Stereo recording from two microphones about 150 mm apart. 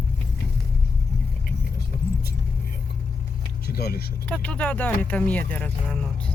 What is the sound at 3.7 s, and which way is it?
Vehicle, 90° left.